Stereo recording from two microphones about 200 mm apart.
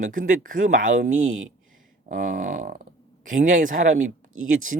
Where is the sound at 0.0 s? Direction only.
40° right (ahead or behind).